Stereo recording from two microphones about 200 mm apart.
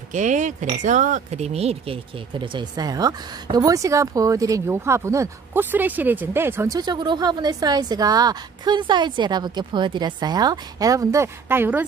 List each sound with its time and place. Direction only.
0.1 s speech: 35° right (ahead or behind); by 11.8 s 10° right (ahead or behind)